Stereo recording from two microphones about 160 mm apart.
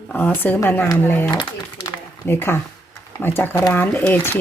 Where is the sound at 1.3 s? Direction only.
30° left (ahead or behind).